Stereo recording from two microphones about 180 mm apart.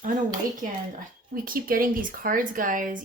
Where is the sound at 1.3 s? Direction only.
50° right (ahead or behind).